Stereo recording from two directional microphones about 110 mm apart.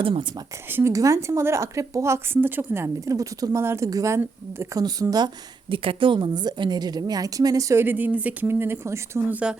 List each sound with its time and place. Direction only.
0.0 s a woman's voice: 50° right (ahead or behind)
0.7 s a woman's voice: 25° right (ahead or behind)
5.7 s a woman's voice: 55° right (ahead or behind); by 9.2 s 25° right (ahead or behind)
9.3 s speech: 10° right (ahead or behind)